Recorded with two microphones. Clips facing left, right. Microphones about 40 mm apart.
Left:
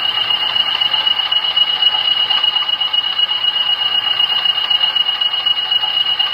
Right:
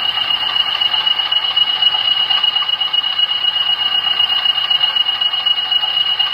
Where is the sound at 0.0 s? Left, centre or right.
Centre.